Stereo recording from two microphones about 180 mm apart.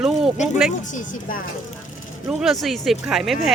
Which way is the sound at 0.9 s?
45° left (ahead or behind).